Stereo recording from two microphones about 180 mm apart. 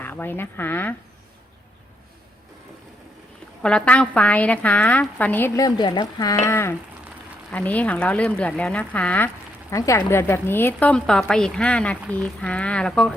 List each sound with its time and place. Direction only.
0.0 s speech: 10° left (ahead or behind)
3.6 s speech: 5° left (ahead or behind)
5.6 s speech: 25° left (ahead or behind); by 13.1 s centre (ahead or behind)